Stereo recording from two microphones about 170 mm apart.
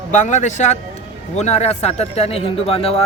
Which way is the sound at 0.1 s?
45° left (ahead or behind).